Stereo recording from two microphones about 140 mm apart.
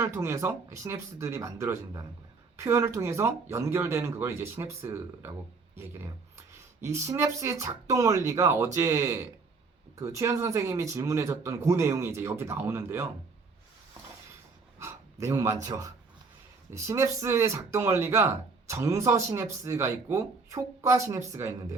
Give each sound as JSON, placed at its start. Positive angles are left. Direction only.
{"t": 0.0, "sound": "speech", "side_deg": -20}
{"t": 6.3, "sound": "speech", "side_deg": -20}
{"t": 14.8, "sound": "speech", "side_deg": -20}